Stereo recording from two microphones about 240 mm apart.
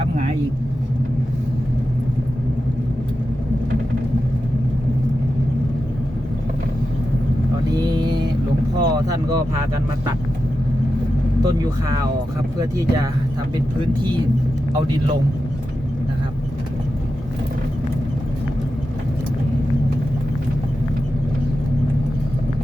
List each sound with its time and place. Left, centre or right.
7.7 s vehicle: centre
8.8 s boat: centre
11.4 s speech: centre